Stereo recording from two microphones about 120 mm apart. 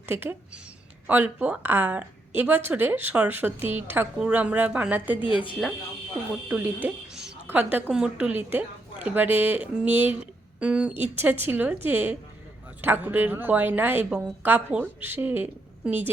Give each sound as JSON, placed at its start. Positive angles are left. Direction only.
{"t": 0.0, "sound": "a woman's voice", "side_deg": -20}
{"t": 5.2, "sound": "speech", "side_deg": 45}
{"t": 6.5, "sound": "a woman's voice", "side_deg": -15}